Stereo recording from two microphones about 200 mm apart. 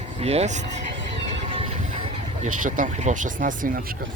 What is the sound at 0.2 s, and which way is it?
Speech, 30° right (ahead or behind).